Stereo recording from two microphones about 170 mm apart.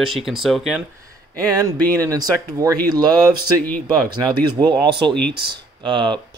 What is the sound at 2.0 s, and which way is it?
Speech, 20° right (ahead or behind).